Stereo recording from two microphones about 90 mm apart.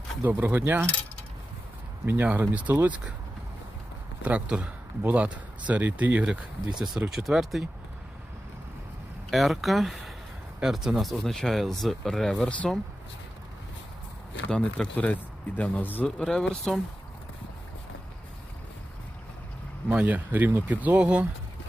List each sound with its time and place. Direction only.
0.2 s speech: 20° right (ahead or behind)
2.0 s speech: 20° right (ahead or behind)
4.2 s speech: 15° right (ahead or behind)
9.3 s speech: centre (ahead or behind)
14.5 s speech: 10° left (ahead or behind)
16.0 s speech: 5° left (ahead or behind)
19.9 s speech: 20° right (ahead or behind)